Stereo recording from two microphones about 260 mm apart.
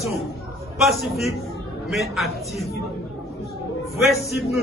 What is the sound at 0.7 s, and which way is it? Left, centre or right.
A man's voice, centre.